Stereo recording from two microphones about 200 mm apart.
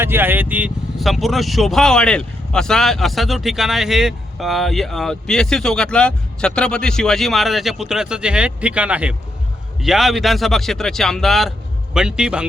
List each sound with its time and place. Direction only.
0.0 s speech: 10° right (ahead or behind)